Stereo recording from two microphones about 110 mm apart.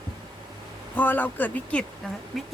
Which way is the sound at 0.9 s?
15° left (ahead or behind).